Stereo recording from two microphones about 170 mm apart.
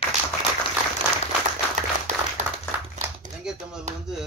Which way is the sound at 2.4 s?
45° right (ahead or behind).